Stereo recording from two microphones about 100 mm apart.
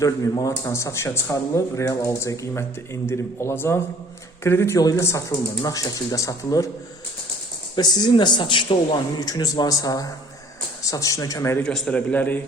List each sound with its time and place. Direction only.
0.3 s speech: 30° left (ahead or behind)
4.8 s speech: 40° left (ahead or behind)
7.8 s speech: 45° left (ahead or behind)
9.2 s speech: 40° left (ahead or behind)
11.6 s a man's voice: 5° left (ahead or behind)